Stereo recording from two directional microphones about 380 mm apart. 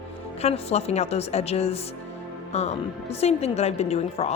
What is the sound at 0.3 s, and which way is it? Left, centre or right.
A woman's voice, centre.